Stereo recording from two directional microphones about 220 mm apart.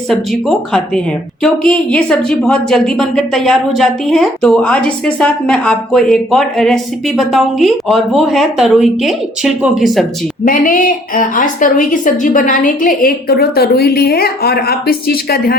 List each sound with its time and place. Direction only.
0.1 s a woman's voice: centre (ahead or behind)
10.4 s a woman's voice: 40° left (ahead or behind)